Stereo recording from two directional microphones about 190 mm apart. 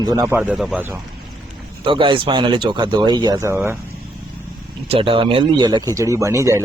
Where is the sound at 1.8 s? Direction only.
25° right (ahead or behind).